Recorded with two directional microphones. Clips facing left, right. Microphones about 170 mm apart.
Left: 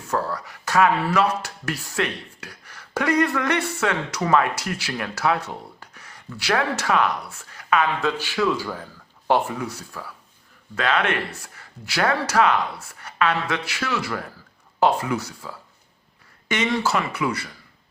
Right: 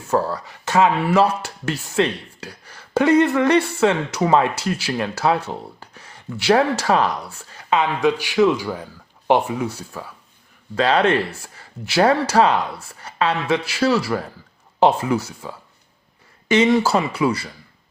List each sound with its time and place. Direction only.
0.1 s speech: 30° right (ahead or behind)